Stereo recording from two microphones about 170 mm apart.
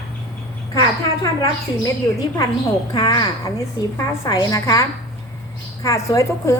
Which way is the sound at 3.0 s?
25° left (ahead or behind).